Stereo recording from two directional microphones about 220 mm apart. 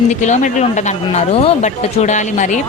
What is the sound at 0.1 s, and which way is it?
A woman's voice, 35° left (ahead or behind).